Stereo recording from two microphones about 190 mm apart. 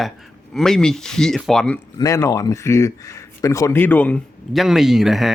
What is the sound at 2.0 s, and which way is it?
Speech, 15° left (ahead or behind).